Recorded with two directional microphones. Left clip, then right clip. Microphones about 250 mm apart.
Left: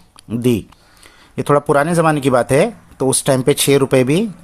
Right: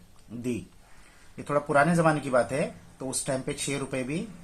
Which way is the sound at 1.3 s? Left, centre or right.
Left.